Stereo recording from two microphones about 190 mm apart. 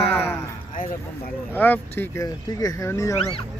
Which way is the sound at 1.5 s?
10° left (ahead or behind).